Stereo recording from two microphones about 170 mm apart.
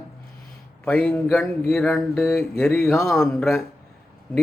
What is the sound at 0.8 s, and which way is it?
Speech, 5° left (ahead or behind).